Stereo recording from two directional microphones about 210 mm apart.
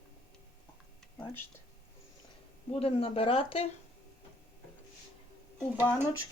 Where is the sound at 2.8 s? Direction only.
30° left (ahead or behind).